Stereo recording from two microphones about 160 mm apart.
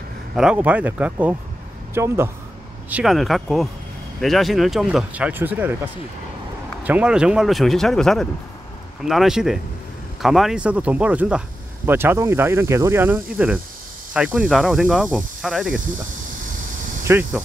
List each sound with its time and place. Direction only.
0.4 s speech: 5° right (ahead or behind)
2.9 s speech: centre (ahead or behind)
6.8 s speech: 10° right (ahead or behind)
17.0 s speech: 15° right (ahead or behind)